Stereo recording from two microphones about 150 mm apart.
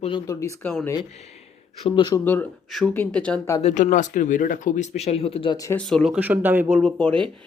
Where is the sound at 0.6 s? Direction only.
10° left (ahead or behind).